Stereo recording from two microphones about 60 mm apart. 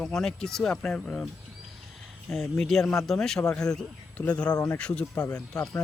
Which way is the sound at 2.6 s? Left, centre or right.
Centre.